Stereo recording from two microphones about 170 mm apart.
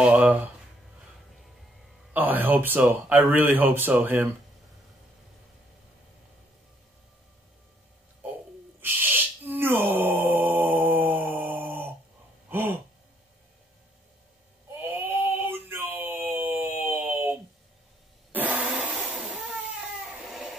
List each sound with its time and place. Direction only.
0.0 s speech: 5° right (ahead or behind)
2.1 s speech: 10° right (ahead or behind)
8.8 s a sound: 10° right (ahead or behind)
12.4 s gasp: 10° right (ahead or behind)
14.8 s a sound: 10° right (ahead or behind)
20.1 s goat: centre (ahead or behind)